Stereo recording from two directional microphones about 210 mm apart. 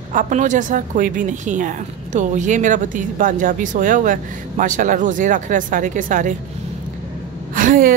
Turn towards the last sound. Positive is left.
turn(degrees=-40)  # may be behind; listen again after turning